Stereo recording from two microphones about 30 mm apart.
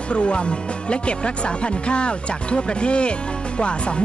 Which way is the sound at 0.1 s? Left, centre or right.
Left.